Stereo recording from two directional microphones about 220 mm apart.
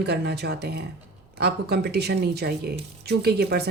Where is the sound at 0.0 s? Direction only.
50° right (ahead or behind).